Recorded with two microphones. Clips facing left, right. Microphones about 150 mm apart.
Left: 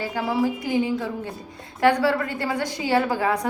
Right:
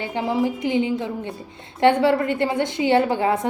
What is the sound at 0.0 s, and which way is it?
A woman's voice, 20° right (ahead or behind).